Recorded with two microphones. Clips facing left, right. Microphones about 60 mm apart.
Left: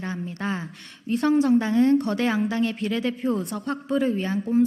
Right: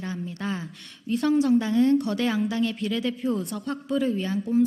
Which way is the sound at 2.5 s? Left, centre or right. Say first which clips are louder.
Left 1 dB; left.